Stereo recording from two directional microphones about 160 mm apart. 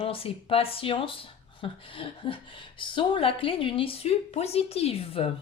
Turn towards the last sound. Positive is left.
turn(degrees=35)  # may be behind; listen again after turning